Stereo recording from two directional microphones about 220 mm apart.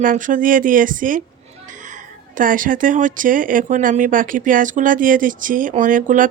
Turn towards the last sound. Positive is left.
turn(degrees=-35)  # may be behind; listen again after turning